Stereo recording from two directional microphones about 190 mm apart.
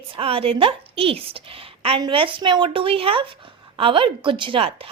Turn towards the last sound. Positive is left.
turn(degrees=-30)  # may be behind; listen again after turning